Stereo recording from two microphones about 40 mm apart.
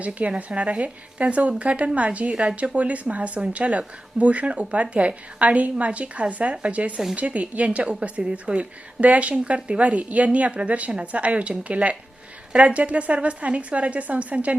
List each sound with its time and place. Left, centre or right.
0.0 s speech: right